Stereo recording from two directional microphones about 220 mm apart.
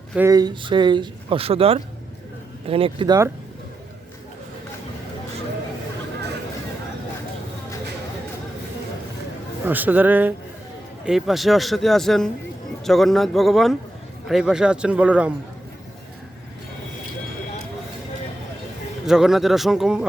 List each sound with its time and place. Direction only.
0.2 s speech: 15° right (ahead or behind)
9.6 s speech: 10° right (ahead or behind)
19.0 s speech: centre (ahead or behind)